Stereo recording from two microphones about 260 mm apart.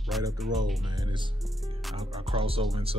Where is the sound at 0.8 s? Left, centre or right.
Centre.